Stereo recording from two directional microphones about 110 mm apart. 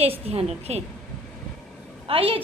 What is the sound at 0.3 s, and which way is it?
Speech, 70° right (ahead or behind).